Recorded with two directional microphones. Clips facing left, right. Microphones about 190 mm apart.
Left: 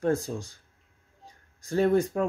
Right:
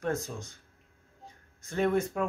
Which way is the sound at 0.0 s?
30° left (ahead or behind).